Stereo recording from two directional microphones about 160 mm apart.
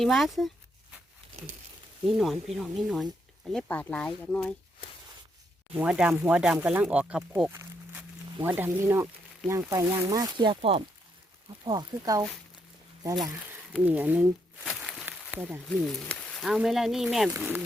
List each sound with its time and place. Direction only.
0.0 s speech: centre (ahead or behind)
2.0 s speech: centre (ahead or behind)
5.7 s speech: 5° right (ahead or behind)
7.5 s snake: 15° right (ahead or behind)
9.5 s speech: 20° right (ahead or behind); by 10.8 s 35° right (ahead or behind)
11.6 s speech: 25° right (ahead or behind)
13.8 s a sound: 10° right (ahead or behind)
15.8 s speech: 5° left (ahead or behind); by 17.6 s 10° right (ahead or behind)